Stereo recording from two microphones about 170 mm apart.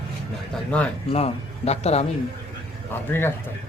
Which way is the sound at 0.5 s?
5° left (ahead or behind).